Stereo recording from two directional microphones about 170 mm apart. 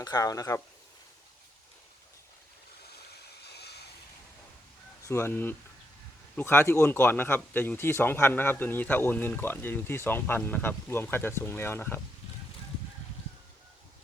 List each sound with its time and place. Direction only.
0.0 s speech: 20° left (ahead or behind)
3.4 s vehicle: 75° left (ahead or behind)
5.0 s speech: 15° left (ahead or behind)